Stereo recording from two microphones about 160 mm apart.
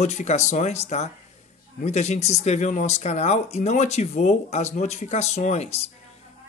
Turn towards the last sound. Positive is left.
turn(degrees=45)  # may be behind; listen again after turning